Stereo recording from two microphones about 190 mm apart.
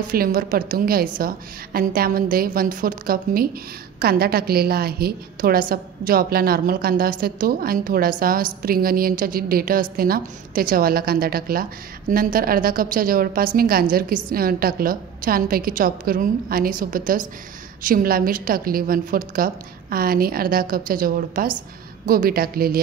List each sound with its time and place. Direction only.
0.1 s a woman's voice: 50° right (ahead or behind)